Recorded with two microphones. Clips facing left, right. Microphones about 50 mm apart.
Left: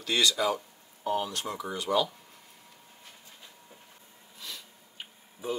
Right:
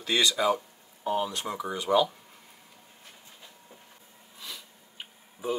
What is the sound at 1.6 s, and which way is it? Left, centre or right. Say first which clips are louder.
Stir: right 4 dB; centre.